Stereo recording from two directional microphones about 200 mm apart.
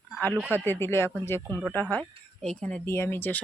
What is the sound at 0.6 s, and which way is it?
Speech, 10° left (ahead or behind).